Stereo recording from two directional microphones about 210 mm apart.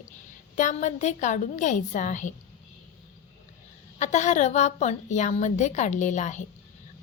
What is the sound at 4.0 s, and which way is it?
Speech, 35° left (ahead or behind).